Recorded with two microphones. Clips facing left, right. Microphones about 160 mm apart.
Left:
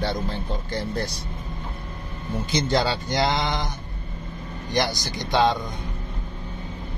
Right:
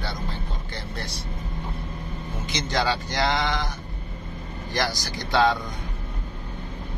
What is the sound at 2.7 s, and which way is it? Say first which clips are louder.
Speech: left 1 dB; 25° left (ahead or behind).